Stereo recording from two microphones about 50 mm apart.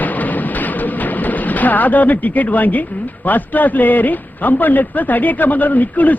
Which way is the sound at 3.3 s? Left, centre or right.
Left.